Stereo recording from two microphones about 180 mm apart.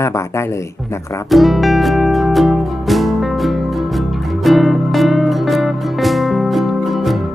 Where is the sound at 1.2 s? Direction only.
Centre (ahead or behind).